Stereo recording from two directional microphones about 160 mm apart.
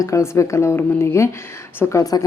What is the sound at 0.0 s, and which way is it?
A woman's voice, 20° left (ahead or behind).